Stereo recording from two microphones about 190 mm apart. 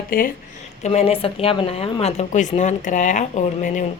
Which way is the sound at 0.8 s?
30° left (ahead or behind).